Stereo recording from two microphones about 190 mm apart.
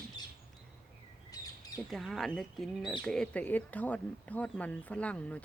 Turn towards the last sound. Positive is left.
turn(degrees=5)  # may be behind; listen again after turning